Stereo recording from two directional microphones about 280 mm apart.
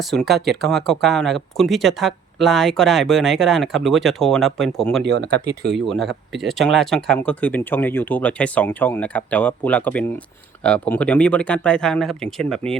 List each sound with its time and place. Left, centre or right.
0.0 s speech: centre
0.3 s speech: right
0.7 s speech: centre
5.0 s speech: right
5.7 s speech: centre